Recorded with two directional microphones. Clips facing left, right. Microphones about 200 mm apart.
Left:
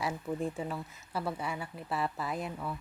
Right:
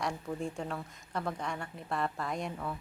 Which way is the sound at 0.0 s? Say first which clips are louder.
Left 2 dB; 5° left (ahead or behind).